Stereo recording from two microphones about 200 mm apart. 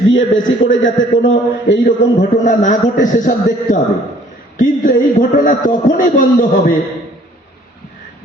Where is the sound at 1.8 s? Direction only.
40° left (ahead or behind).